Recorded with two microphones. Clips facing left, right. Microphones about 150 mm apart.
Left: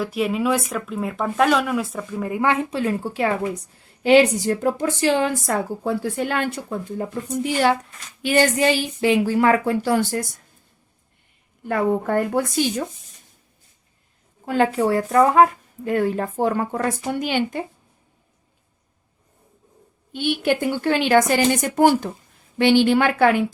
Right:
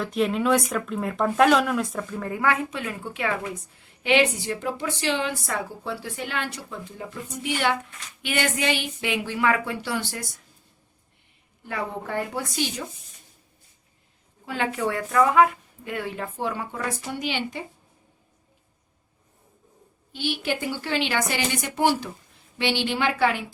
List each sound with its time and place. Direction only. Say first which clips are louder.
0.0 s speech: left 2 dB; 5° left (ahead or behind)
2.4 s a woman's voice: left 5 dB; 25° left (ahead or behind); by 10.2 s 45° left (ahead or behind)
11.6 s speech: left 10 dB; 50° left (ahead or behind)
14.4 s speech: left 7 dB; 40° left (ahead or behind)
20.1 s speech: left 7 dB; 55° left (ahead or behind)